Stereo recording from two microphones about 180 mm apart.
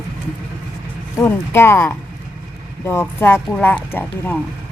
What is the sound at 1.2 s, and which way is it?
Speech, 15° left (ahead or behind).